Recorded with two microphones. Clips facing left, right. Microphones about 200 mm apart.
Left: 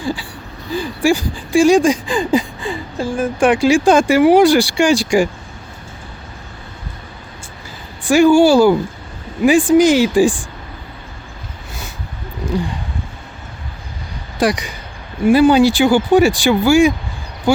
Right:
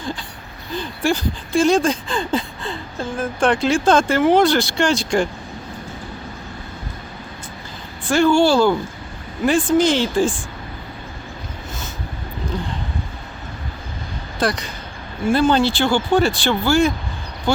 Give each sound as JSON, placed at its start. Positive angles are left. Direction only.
{"t": 0.0, "sound": "a sound", "side_deg": 10}
{"t": 0.8, "sound": "speech", "side_deg": 10}
{"t": 8.0, "sound": "speech", "side_deg": 15}
{"t": 12.5, "sound": "speech", "side_deg": 10}
{"t": 14.3, "sound": "speech", "side_deg": 15}